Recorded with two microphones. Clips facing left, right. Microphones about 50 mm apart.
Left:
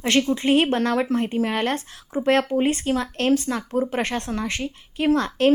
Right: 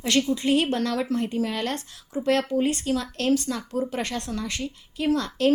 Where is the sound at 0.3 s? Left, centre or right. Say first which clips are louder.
Left 3 dB; left.